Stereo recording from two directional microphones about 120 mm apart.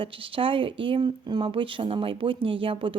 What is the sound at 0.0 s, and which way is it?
Speech, 50° right (ahead or behind).